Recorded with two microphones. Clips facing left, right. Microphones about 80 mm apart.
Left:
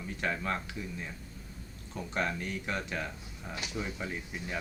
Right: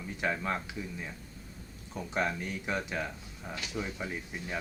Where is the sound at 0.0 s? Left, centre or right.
Centre.